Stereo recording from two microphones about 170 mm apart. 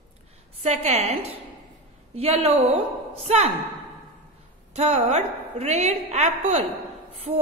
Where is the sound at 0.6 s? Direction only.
40° right (ahead or behind).